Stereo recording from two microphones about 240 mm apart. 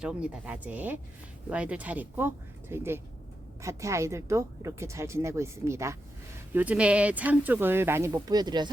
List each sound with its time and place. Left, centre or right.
0.0 s a woman's voice: centre